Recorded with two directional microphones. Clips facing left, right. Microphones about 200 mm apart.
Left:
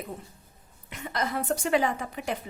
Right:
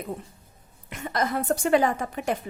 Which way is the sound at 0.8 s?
50° right (ahead or behind).